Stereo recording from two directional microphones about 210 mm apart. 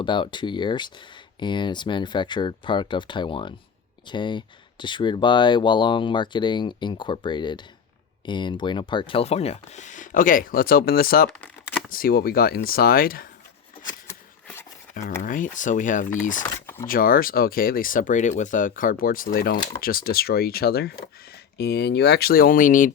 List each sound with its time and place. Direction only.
0.0 s speech: 20° left (ahead or behind); by 11.3 s 45° left (ahead or behind)
11.3 s typing: 5° left (ahead or behind)
11.9 s speech: 45° left (ahead or behind)
13.8 s a sound: 10° left (ahead or behind)
15.2 s speech: 40° left (ahead or behind)
16.4 s a sound: 10° left (ahead or behind)
16.8 s speech: 45° left (ahead or behind)